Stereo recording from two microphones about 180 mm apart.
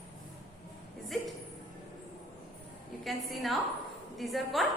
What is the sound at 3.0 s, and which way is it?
A woman's voice, centre (ahead or behind).